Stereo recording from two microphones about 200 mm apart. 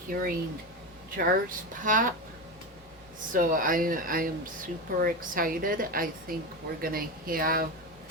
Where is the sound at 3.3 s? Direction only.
45° right (ahead or behind).